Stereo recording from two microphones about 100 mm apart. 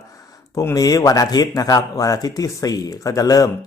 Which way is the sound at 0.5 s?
35° left (ahead or behind).